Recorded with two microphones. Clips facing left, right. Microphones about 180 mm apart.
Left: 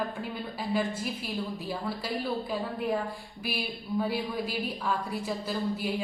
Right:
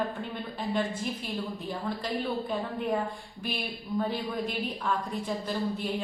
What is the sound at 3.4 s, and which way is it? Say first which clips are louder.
A woman's voice: even; 10° left (ahead or behind).